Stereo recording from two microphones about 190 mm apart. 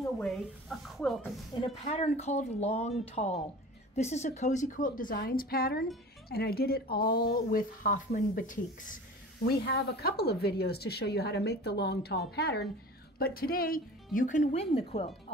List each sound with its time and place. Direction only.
0.2 s speech: centre (ahead or behind)
1.6 s speech: 30° left (ahead or behind)
9.4 s speech: 60° left (ahead or behind); by 15.3 s 35° left (ahead or behind)